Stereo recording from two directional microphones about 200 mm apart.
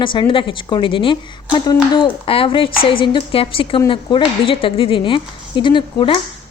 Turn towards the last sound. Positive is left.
turn(degrees=25)  # may be behind; listen again after turning